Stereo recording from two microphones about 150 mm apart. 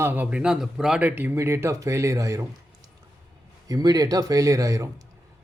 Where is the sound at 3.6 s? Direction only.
25° right (ahead or behind).